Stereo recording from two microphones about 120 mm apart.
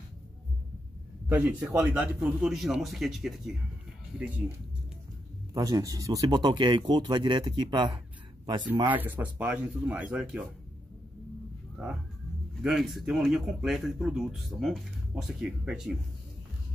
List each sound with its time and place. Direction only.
1.3 s speech: 15° right (ahead or behind)
5.5 s speech: 30° right (ahead or behind)
8.8 s speech: 15° right (ahead or behind)
12.6 s speech: centre (ahead or behind)